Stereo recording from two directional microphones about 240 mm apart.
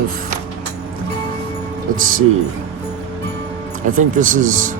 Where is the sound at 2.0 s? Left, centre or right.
Right.